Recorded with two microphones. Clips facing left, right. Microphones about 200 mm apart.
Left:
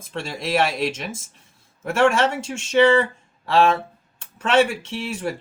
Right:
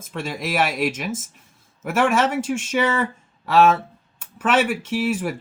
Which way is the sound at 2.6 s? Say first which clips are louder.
Left 10 dB; 30° left (ahead or behind).